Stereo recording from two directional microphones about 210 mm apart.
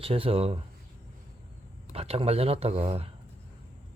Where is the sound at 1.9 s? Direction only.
30° right (ahead or behind).